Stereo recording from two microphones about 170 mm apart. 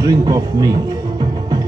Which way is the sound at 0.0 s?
20° right (ahead or behind).